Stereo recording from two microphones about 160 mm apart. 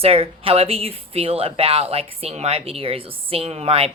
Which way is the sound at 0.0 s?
35° right (ahead or behind).